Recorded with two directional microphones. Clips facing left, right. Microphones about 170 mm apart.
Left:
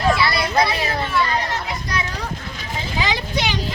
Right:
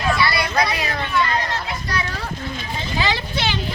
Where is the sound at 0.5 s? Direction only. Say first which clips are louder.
Left 2 dB; 25° left (ahead or behind).